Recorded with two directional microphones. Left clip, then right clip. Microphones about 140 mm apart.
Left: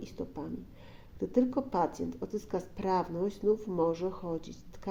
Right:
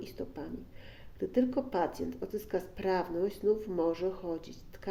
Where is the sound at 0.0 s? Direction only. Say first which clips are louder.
Left 1 dB; 45° left (ahead or behind).